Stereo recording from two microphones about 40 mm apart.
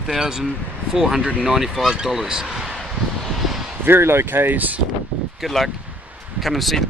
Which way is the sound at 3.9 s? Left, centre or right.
Right.